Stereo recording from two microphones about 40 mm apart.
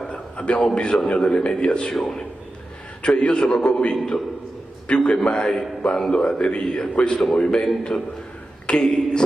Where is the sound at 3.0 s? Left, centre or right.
Left.